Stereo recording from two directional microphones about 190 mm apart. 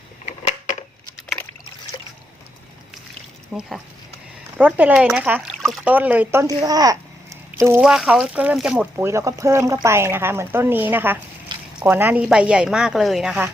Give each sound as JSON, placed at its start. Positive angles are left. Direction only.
{"t": 0.3, "sound": "a sound", "side_deg": 35}
{"t": 3.5, "sound": "a woman's voice", "side_deg": -5}
{"t": 7.8, "sound": "a woman's voice", "side_deg": -5}